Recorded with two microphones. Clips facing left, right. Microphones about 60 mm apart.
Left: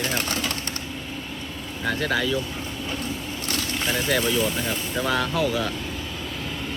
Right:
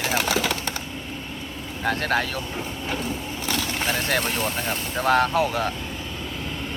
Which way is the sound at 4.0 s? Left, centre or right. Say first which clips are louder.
Left 2 dB; right.